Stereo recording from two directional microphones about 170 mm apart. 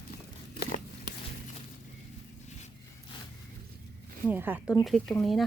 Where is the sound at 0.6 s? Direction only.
65° left (ahead or behind).